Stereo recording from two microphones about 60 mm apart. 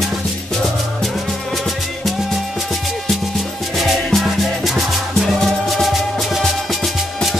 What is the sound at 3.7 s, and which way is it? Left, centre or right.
Music, centre.